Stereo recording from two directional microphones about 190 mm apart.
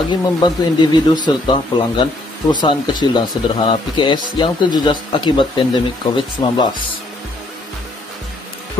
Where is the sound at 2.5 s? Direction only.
20° left (ahead or behind).